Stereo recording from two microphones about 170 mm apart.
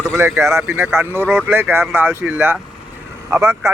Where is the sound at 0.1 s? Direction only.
15° right (ahead or behind).